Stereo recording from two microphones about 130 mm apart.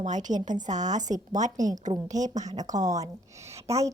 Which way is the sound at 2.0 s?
65° right (ahead or behind).